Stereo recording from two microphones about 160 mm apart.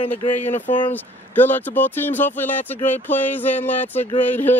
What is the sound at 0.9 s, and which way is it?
Speech, 10° left (ahead or behind).